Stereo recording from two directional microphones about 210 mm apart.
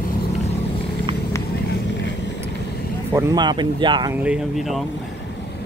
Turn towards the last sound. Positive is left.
turn(degrees=0)  # may be behind; listen again after turning